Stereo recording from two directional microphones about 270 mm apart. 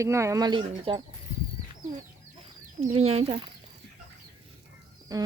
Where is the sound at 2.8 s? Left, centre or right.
Right.